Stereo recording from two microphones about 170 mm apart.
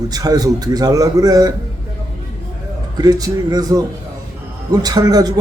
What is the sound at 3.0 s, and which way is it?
A man's voice, 20° right (ahead or behind).